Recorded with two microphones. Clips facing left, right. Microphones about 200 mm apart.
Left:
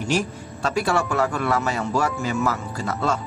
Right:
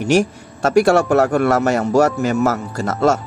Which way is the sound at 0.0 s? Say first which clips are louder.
Right 8 dB; 75° right (ahead or behind).